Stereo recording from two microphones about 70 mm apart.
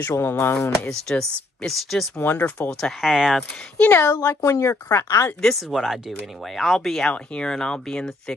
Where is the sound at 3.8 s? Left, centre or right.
Left.